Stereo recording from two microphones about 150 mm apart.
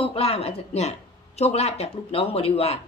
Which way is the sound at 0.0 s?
40° left (ahead or behind).